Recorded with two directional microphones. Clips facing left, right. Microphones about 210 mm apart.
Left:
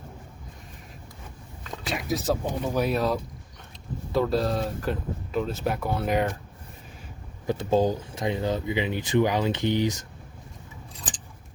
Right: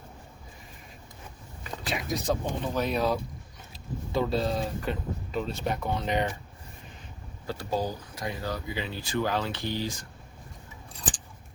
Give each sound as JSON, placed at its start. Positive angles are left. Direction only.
{"t": 1.8, "sound": "speech", "side_deg": 0}
{"t": 7.4, "sound": "speech", "side_deg": 20}